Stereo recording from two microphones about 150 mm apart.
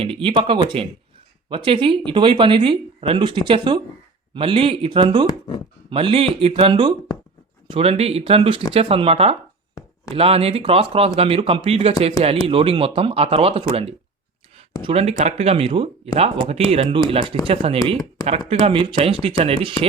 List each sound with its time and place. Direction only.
0.0 s speech: 35° right (ahead or behind)
5.3 s speech: 30° left (ahead or behind)
5.9 s speech: 40° right (ahead or behind)